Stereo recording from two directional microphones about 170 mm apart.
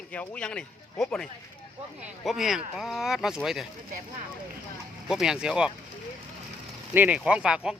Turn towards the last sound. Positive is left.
turn(degrees=-5)  # may be behind; listen again after turning